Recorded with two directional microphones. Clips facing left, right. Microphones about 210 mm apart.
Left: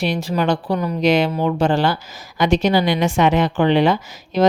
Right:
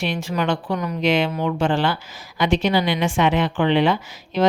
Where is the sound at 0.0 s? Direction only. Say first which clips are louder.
Left 3 dB; 35° left (ahead or behind).